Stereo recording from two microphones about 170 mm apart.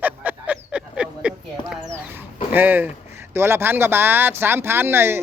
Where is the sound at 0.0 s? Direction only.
10° right (ahead or behind).